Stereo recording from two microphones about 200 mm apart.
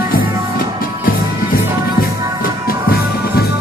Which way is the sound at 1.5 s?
45° left (ahead or behind).